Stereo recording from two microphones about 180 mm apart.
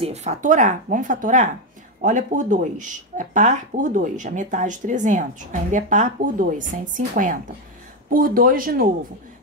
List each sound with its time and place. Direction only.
0.0 s speech: 40° right (ahead or behind)